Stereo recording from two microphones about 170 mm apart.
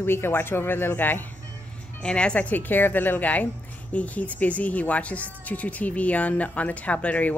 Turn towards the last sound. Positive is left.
turn(degrees=10)  # may be behind; listen again after turning